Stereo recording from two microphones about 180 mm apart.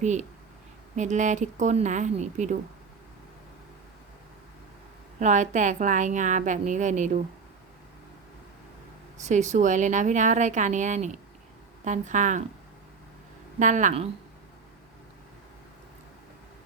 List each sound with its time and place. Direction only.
0.0 s a woman's voice: 40° right (ahead or behind)
5.2 s a woman's voice: 45° right (ahead or behind)
9.1 s a woman's voice: 40° right (ahead or behind)
13.6 s a woman's voice: 45° right (ahead or behind)